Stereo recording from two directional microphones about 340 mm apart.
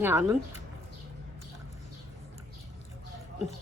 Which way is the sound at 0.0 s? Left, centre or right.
Centre.